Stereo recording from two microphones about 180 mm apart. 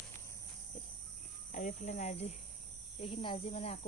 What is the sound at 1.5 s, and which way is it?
Speech, 45° left (ahead or behind).